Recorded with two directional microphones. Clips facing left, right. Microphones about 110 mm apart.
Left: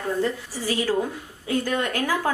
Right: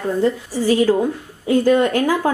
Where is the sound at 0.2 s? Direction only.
25° right (ahead or behind).